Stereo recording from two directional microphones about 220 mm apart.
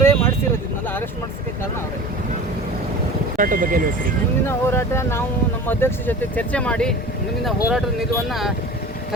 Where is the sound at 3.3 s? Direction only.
40° right (ahead or behind).